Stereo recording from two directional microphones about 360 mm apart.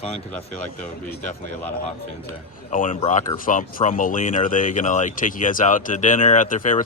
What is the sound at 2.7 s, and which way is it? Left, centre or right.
Speech, left.